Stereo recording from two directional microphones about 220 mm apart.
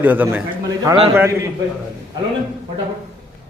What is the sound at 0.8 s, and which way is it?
Speech, 25° right (ahead or behind).